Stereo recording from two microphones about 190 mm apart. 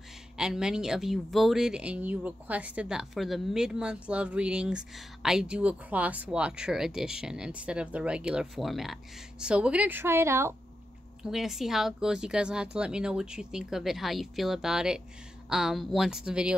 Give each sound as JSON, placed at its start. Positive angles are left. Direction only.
{"t": 0.4, "sound": "speech", "side_deg": -5}
{"t": 11.2, "sound": "speech", "side_deg": 0}